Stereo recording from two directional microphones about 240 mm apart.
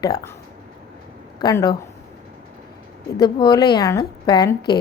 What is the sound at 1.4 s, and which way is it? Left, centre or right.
Speech, centre.